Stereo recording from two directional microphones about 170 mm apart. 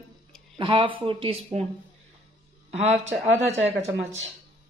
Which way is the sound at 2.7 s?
40° right (ahead or behind).